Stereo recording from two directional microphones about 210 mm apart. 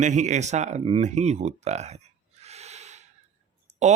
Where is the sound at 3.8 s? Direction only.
35° right (ahead or behind).